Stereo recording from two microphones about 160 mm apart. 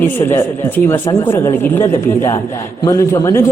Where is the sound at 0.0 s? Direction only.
15° left (ahead or behind).